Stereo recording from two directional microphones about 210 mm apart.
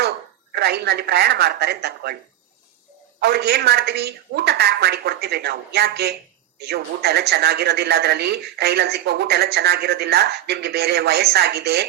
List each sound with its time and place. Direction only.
0.5 s speech: 50° right (ahead or behind)
3.2 s speech: 50° right (ahead or behind)